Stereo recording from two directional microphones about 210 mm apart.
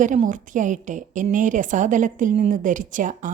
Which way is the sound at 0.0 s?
35° right (ahead or behind).